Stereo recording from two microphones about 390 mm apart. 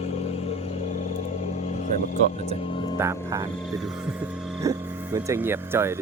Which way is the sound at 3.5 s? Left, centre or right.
Centre.